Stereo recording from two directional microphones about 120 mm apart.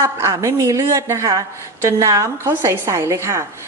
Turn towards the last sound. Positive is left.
turn(degrees=-25)  # may be behind; listen again after turning